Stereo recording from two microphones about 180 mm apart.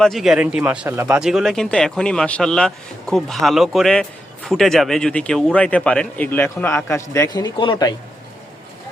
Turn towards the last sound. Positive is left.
turn(degrees=25)  # may be behind; listen again after turning